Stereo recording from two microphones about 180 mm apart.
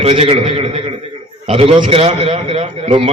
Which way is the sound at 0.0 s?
35° right (ahead or behind).